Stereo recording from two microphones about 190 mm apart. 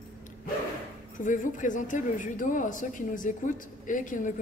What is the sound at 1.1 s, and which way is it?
A woman's voice, 45° left (ahead or behind).